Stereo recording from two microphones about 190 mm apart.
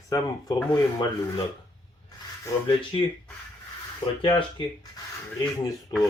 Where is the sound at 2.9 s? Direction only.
25° left (ahead or behind).